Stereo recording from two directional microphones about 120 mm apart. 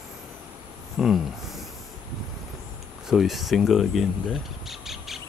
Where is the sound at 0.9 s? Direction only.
Centre (ahead or behind).